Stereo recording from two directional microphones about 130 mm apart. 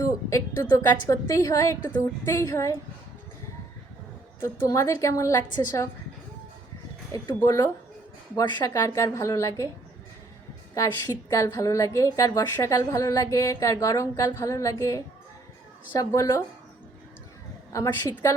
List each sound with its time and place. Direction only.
0.0 s a woman's voice: 25° left (ahead or behind)
4.4 s a woman's voice: 20° left (ahead or behind)
7.1 s a woman's voice: 25° left (ahead or behind)
11.0 s a woman's voice: 25° left (ahead or behind)
17.7 s a woman's voice: 25° left (ahead or behind)